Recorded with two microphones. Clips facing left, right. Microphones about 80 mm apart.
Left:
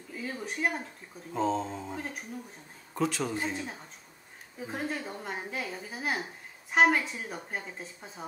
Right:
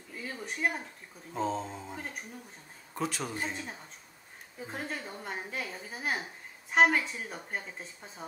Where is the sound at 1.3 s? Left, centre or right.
Centre.